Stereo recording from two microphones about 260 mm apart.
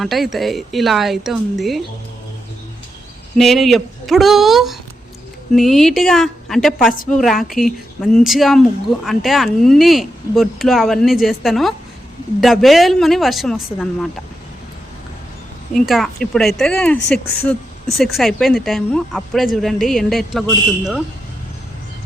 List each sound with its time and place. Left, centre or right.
0.0 s speech: centre
3.3 s speech: centre
6.9 s a woman's voice: left
7.2 s speech: centre
15.7 s speech: centre